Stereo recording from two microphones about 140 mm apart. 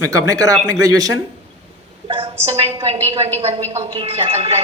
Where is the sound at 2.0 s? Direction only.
40° right (ahead or behind).